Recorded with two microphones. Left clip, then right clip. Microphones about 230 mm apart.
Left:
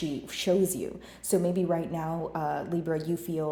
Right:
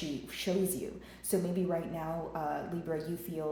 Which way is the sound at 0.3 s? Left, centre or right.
Left.